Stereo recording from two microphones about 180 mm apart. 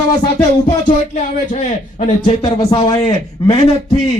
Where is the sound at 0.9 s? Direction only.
45° left (ahead or behind).